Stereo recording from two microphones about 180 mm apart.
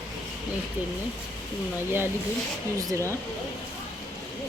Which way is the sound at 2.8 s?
20° right (ahead or behind).